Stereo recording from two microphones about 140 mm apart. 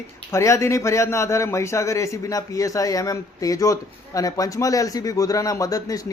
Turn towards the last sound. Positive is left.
turn(degrees=25)  # may be behind; listen again after turning